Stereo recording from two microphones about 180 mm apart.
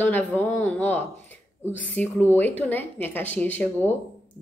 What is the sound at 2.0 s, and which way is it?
A woman's voice, 10° left (ahead or behind).